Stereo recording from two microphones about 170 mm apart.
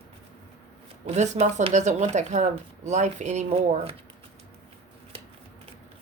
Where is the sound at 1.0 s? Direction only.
45° right (ahead or behind).